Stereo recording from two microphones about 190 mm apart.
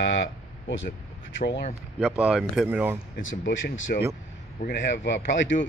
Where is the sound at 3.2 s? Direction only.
90° left.